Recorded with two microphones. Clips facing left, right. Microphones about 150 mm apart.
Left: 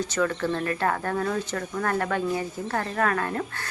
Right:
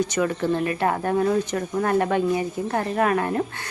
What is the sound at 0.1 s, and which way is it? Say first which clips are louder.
Speech: right 3 dB; 15° right (ahead or behind).